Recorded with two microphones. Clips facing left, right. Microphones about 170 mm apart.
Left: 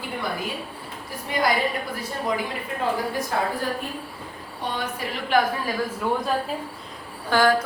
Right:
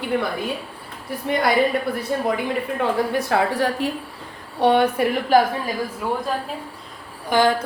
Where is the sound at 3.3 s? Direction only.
80° right.